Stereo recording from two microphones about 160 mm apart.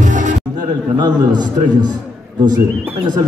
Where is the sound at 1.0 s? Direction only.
25° right (ahead or behind).